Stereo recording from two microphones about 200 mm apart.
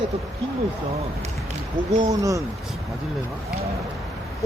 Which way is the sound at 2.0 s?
15° right (ahead or behind).